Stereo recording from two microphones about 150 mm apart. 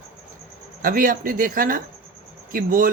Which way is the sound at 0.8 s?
70° right (ahead or behind).